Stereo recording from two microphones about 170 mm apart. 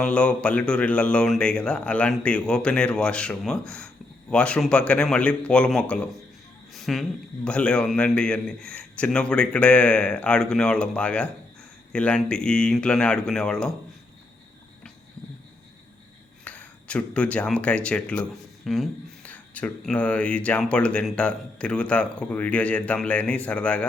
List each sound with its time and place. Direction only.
0.0 s speech: 5° left (ahead or behind)
6.7 s a sound: centre (ahead or behind)
7.4 s speech: 5° left (ahead or behind)
16.4 s speech: 5° left (ahead or behind)